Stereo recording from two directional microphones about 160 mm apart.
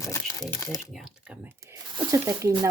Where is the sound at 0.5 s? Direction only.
15° left (ahead or behind).